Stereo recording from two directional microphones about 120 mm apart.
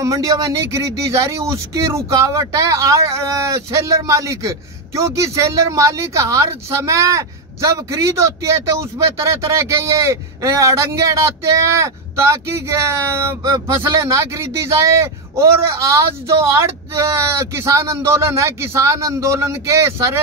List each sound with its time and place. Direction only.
0.0 s speech: 25° right (ahead or behind)